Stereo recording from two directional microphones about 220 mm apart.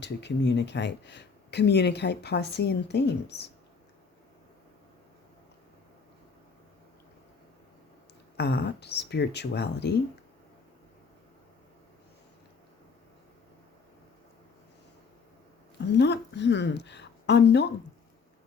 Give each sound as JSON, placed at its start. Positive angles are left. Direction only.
{"t": 0.0, "sound": "speech", "side_deg": 50}
{"t": 8.4, "sound": "speech", "side_deg": 50}
{"t": 16.0, "sound": "speech", "side_deg": 50}